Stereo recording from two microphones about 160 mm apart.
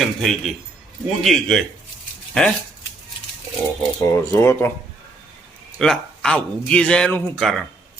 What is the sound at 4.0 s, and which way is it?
Speech, 15° left (ahead or behind).